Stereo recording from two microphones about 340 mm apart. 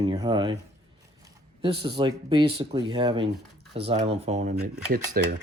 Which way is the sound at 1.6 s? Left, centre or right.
Centre.